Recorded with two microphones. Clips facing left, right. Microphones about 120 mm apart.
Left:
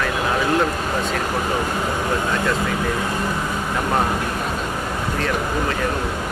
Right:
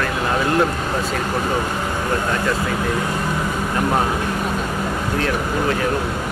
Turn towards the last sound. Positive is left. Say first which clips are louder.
# right 2 dB
turn(degrees=0)  # may be behind; listen again after turning